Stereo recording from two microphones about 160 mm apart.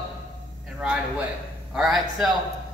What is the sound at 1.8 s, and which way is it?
Speech, centre (ahead or behind).